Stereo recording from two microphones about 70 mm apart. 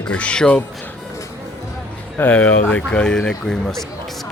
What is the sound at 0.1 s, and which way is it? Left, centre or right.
Speech, centre.